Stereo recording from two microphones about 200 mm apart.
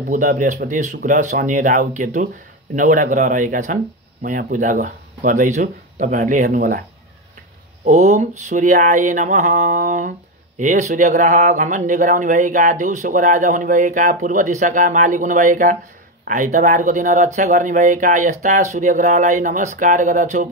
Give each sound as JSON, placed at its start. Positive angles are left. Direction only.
{"t": 0.1, "sound": "speech", "side_deg": -40}
{"t": 7.8, "sound": "speech", "side_deg": -35}